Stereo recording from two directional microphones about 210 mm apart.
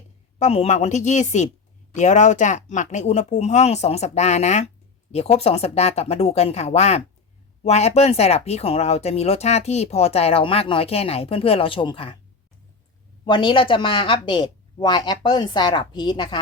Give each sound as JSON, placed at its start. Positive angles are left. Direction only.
{"t": 0.3, "sound": "speech", "side_deg": 30}
{"t": 13.2, "sound": "speech", "side_deg": 20}